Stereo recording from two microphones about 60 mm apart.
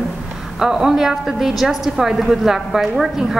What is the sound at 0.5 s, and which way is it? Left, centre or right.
A woman's voice, centre.